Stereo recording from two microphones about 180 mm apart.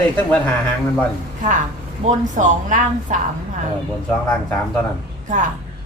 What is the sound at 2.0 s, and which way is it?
A woman's voice, 45° right (ahead or behind).